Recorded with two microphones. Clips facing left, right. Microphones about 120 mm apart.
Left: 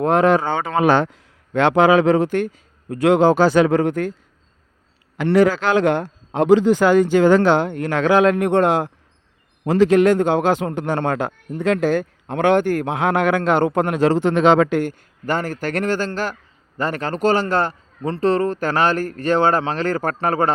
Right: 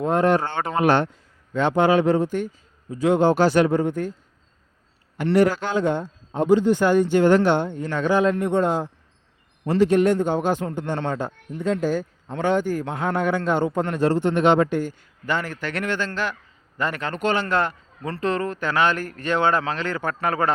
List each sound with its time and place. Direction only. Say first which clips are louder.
0.0 s speech: left 4 dB; 90° left
3.7 s speech: left 4 dB; 90° left
5.5 s speech: left 5 dB; 85° left
9.6 s a man's voice: left 4 dB; 90° left
14.9 s a man's voice: left 3 dB; 45° left (ahead or behind)